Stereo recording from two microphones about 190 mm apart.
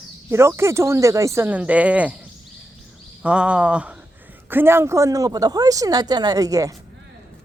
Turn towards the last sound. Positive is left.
turn(degrees=-20)  # may be behind; listen again after turning